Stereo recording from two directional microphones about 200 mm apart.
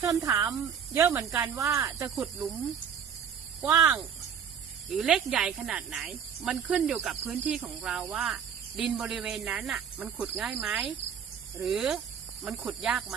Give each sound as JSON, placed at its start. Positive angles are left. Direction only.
{"t": 0.0, "sound": "speech", "side_deg": -15}
{"t": 2.0, "sound": "speech", "side_deg": 0}
{"t": 3.7, "sound": "speech", "side_deg": -15}
{"t": 4.9, "sound": "speech", "side_deg": -5}